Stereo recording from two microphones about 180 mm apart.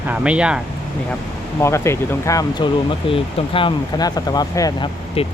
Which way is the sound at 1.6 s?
15° left (ahead or behind).